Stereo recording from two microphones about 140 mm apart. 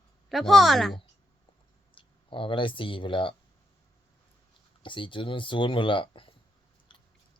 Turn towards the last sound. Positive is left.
turn(degrees=35)  # may be behind; listen again after turning